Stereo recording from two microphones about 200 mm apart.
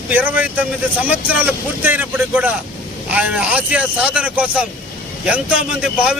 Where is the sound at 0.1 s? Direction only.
10° right (ahead or behind).